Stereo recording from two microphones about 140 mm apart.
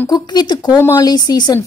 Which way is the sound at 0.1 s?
30° left (ahead or behind).